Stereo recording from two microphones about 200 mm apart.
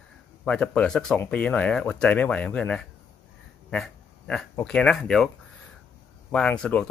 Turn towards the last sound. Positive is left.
turn(degrees=5)  # may be behind; listen again after turning